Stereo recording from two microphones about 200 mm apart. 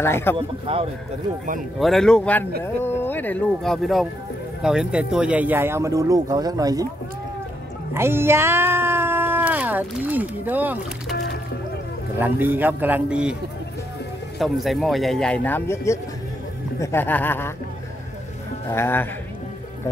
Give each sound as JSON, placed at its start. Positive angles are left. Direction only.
{"t": 0.0, "sound": "speech", "side_deg": 10}
{"t": 0.4, "sound": "speech", "side_deg": -30}
{"t": 1.8, "sound": "speech", "side_deg": 0}
{"t": 7.9, "sound": "speech", "side_deg": -10}
{"t": 12.2, "sound": "speech", "side_deg": -10}
{"t": 14.4, "sound": "speech", "side_deg": 0}
{"t": 18.7, "sound": "speech", "side_deg": 10}